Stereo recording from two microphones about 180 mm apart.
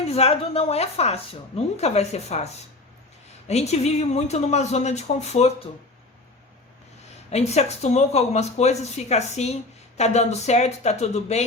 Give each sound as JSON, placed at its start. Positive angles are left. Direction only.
{"t": 0.1, "sound": "a woman's voice", "side_deg": 35}
{"t": 7.3, "sound": "a woman's voice", "side_deg": 35}